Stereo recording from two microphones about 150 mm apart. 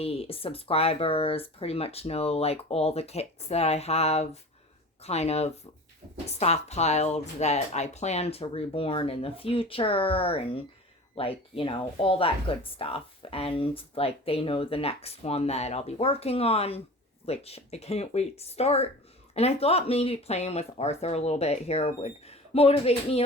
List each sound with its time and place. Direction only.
0.0 s speech: 40° left (ahead or behind)